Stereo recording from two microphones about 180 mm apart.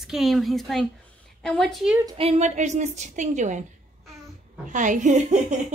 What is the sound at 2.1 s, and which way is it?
A woman's voice, 35° right (ahead or behind).